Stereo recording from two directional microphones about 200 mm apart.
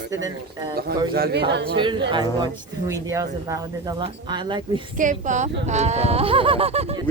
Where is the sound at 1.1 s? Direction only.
50° right (ahead or behind).